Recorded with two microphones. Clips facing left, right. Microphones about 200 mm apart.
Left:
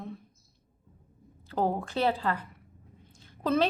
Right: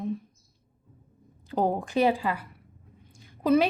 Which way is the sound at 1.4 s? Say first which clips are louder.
Right 3 dB; 15° right (ahead or behind).